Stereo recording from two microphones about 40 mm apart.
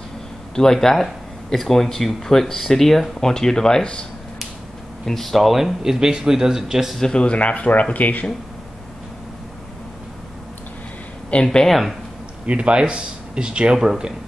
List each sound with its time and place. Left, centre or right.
0.6 s speech: centre
5.0 s speech: centre
7.0 s speech: left
11.4 s speech: centre
12.4 s speech: right